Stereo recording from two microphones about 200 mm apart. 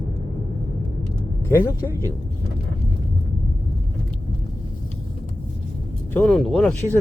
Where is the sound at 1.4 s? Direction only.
10° left (ahead or behind).